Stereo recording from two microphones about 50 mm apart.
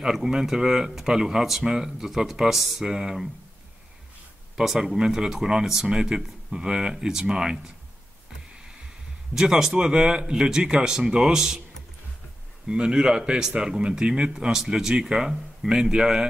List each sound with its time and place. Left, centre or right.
0.0 s speech: centre
4.6 s speech: centre
9.3 s speech: centre
12.6 s speech: centre